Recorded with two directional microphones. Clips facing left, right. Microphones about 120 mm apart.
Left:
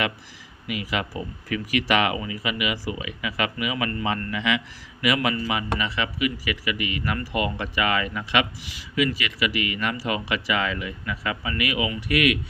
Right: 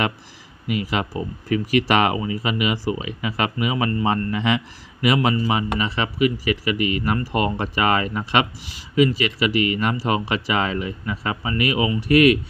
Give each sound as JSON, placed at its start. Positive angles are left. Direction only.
{"t": 0.7, "sound": "a man's voice", "side_deg": -35}